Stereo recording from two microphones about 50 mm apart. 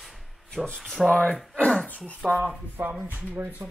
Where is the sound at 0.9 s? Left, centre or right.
Centre.